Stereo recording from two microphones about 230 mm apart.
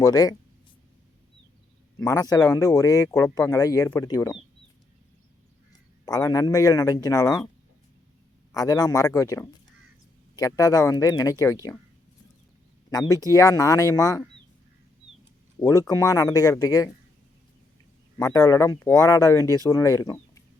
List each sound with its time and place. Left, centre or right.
0.0 s speech: centre
2.0 s speech: centre
6.1 s speech: centre
8.5 s speech: centre
12.9 s speech: centre
15.6 s speech: centre
18.2 s speech: centre